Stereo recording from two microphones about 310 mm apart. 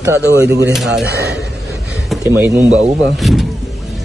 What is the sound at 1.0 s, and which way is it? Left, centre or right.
Speech, right.